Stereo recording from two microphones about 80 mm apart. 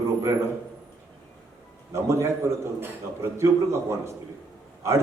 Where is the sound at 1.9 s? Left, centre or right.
Right.